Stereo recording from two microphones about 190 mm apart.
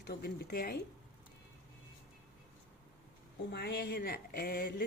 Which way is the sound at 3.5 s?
60° left (ahead or behind).